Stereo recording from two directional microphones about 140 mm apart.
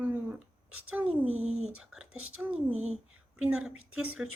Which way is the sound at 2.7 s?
50° right (ahead or behind).